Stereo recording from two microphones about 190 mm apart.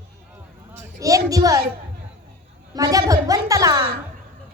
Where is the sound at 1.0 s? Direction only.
15° right (ahead or behind).